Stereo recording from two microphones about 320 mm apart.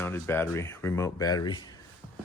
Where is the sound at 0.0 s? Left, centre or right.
Centre.